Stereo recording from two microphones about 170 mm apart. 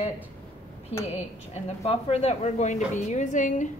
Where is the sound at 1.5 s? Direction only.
40° left (ahead or behind).